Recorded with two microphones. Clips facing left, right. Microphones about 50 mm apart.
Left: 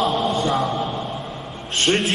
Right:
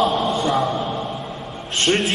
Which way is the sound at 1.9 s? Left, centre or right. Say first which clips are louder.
Even; centre.